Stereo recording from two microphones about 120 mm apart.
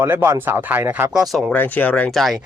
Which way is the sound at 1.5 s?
15° left (ahead or behind).